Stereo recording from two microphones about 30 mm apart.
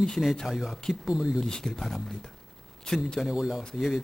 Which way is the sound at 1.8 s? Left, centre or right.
Centre.